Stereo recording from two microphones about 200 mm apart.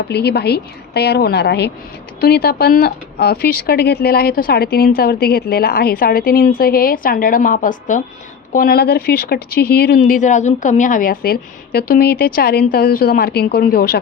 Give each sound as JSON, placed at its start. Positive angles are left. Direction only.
{"t": 0.1, "sound": "a woman's voice", "side_deg": 55}